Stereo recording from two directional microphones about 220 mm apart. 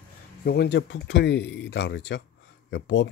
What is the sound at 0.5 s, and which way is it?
Speech, 50° left (ahead or behind).